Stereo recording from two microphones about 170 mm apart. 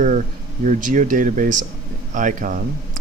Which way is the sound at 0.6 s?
50° right (ahead or behind).